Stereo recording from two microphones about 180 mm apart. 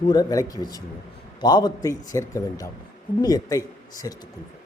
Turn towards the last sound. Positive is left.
turn(degrees=20)  # may be behind; listen again after turning